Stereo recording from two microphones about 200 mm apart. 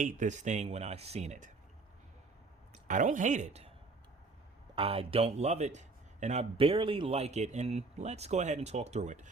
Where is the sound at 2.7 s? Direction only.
40° right (ahead or behind).